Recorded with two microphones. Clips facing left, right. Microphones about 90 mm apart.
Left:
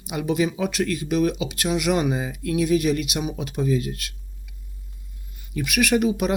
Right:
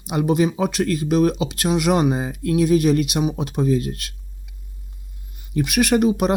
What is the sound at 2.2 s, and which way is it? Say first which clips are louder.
Speech: right 4 dB; 40° right (ahead or behind).